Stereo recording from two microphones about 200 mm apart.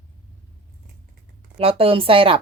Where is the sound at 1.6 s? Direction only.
30° right (ahead or behind).